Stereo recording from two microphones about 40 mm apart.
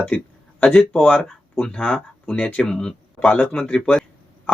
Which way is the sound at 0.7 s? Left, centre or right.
Left.